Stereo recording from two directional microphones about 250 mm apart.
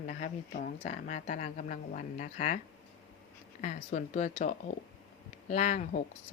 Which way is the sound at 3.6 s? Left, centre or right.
Left.